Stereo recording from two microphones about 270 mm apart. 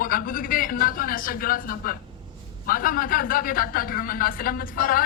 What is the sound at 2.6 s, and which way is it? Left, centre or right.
Speech, left.